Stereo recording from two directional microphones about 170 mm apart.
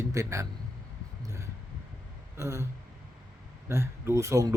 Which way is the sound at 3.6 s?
15° right (ahead or behind).